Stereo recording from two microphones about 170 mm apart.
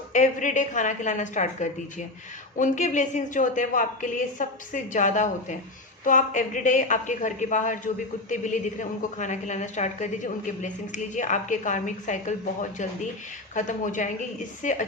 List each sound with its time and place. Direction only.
0.1 s a woman's voice: 50° left (ahead or behind)
13.5 s a woman's voice: 50° left (ahead or behind)